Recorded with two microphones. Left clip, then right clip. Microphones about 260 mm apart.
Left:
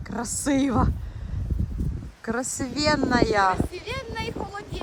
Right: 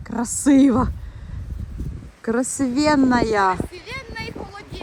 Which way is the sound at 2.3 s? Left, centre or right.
Centre.